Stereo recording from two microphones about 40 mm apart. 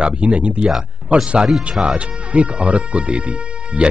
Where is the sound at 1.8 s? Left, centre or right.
Right.